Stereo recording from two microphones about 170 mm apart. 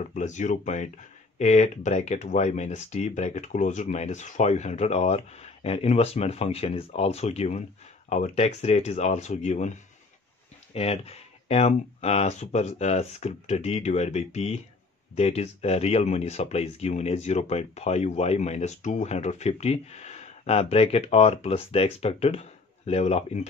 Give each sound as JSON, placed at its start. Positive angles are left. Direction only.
{"t": 0.0, "sound": "speech", "side_deg": 45}